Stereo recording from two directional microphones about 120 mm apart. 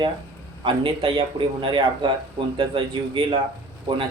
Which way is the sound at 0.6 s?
45° right (ahead or behind).